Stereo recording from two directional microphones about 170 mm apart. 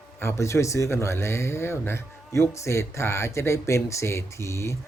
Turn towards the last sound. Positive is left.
turn(degrees=15)  # may be behind; listen again after turning